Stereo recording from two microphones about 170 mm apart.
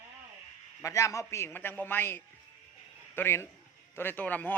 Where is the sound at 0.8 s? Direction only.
20° left (ahead or behind).